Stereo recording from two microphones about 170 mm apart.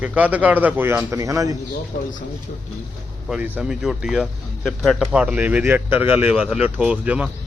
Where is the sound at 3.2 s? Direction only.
10° right (ahead or behind).